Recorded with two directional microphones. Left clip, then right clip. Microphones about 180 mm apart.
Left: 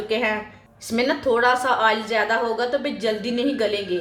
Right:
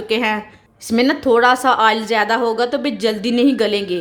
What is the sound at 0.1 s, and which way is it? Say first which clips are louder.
A woman's voice: right 5 dB; 60° right (ahead or behind).